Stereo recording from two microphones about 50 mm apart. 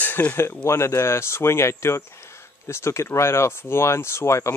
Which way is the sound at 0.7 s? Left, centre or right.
Left.